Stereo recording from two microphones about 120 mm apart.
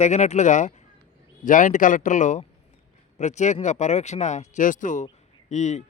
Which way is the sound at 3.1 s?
75° left (ahead or behind).